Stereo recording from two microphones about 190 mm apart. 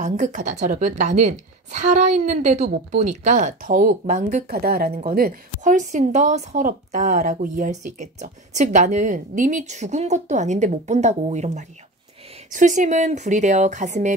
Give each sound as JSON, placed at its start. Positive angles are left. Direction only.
{"t": 0.0, "sound": "a woman's voice", "side_deg": -40}
{"t": 4.5, "sound": "a woman's voice", "side_deg": -55}